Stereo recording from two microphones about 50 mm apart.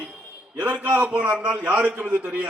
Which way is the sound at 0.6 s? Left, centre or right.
Right.